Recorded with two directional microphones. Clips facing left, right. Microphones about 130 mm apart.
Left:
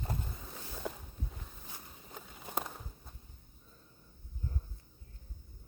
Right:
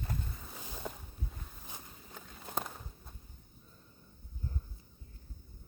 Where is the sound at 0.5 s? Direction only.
15° right (ahead or behind).